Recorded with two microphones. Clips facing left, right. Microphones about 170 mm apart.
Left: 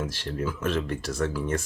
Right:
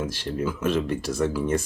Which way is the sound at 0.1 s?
5° right (ahead or behind).